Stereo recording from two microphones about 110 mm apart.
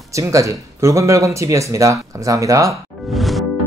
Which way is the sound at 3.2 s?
Centre (ahead or behind).